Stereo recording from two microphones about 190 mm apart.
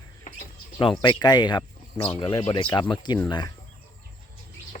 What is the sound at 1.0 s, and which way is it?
Speech, 25° left (ahead or behind).